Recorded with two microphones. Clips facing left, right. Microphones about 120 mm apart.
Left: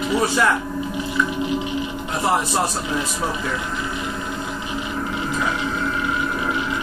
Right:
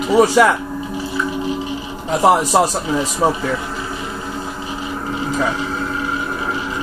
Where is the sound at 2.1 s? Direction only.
90° right.